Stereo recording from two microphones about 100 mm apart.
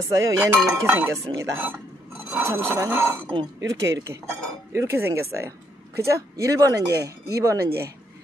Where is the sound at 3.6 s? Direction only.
30° right (ahead or behind).